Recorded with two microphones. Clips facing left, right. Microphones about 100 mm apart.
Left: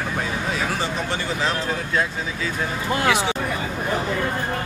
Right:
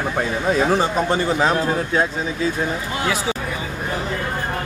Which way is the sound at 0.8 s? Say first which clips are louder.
Right 6 dB; 45° right (ahead or behind).